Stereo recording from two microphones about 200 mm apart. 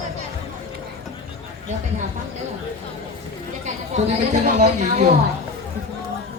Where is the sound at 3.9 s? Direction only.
35° right (ahead or behind).